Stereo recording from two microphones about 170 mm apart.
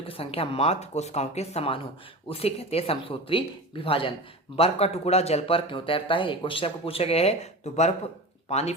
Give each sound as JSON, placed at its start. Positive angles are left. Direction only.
{"t": 0.0, "sound": "speech", "side_deg": 35}